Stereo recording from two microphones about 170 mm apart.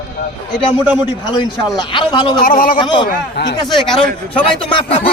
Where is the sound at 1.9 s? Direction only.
30° left (ahead or behind).